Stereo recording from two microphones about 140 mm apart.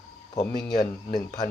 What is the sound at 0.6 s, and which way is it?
Speech, 30° left (ahead or behind).